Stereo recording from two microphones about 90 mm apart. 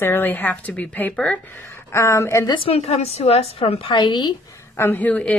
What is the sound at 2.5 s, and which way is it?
A woman's voice, 90° left.